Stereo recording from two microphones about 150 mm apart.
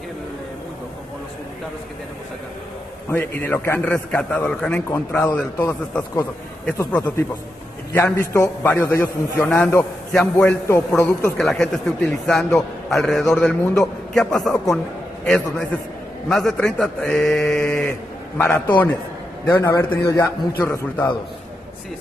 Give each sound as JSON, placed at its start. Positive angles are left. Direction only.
{"t": 3.1, "sound": "a man's voice", "side_deg": 15}
{"t": 11.3, "sound": "a man's voice", "side_deg": 5}